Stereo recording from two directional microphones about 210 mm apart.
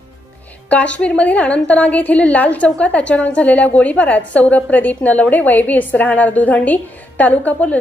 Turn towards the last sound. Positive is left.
turn(degrees=5)  # may be behind; listen again after turning